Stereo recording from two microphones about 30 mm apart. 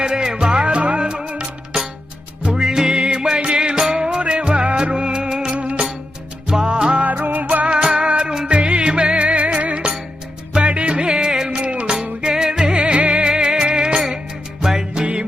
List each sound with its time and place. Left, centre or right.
0.0 s music: right
0.7 s music: right
2.6 s music: centre
5.5 s music: right
6.5 s music: right
7.0 s music: right
7.9 s music: right
12.2 s music: right
13.2 s music: right
15.0 s music: right